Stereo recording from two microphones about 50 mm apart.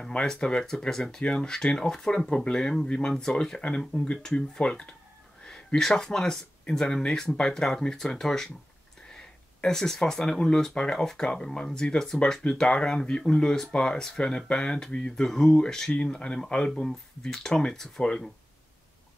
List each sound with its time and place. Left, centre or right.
0.1 s speech: centre
5.4 s a sound: centre
5.8 s speech: centre